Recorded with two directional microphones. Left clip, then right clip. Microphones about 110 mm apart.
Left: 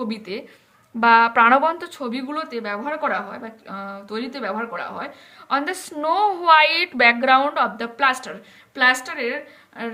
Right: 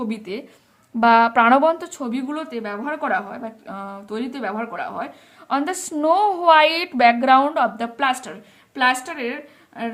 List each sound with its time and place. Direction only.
0.0 s a woman's voice: 40° right (ahead or behind)